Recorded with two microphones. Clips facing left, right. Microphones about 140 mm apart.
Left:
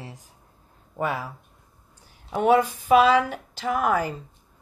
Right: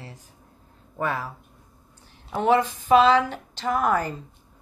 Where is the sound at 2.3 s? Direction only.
10° left (ahead or behind).